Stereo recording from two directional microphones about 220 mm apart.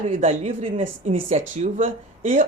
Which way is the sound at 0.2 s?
30° right (ahead or behind).